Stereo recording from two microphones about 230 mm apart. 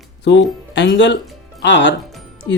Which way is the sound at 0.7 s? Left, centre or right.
Left.